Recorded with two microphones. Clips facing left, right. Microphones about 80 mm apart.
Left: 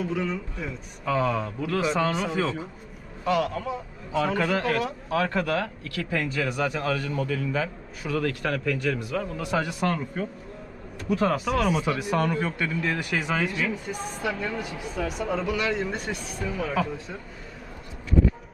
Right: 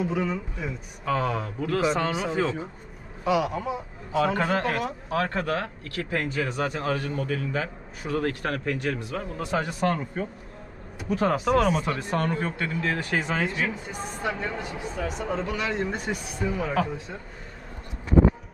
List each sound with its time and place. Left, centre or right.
0.0 s speech: centre
5.1 s a man's voice: right
11.3 s speech: centre
12.1 s speech: right
15.4 s speech: centre